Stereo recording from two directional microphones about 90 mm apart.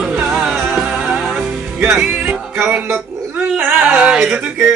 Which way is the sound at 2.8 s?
20° right (ahead or behind).